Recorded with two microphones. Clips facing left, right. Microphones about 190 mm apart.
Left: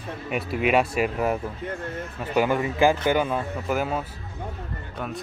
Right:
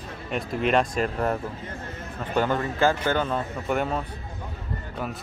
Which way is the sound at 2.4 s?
10° left (ahead or behind).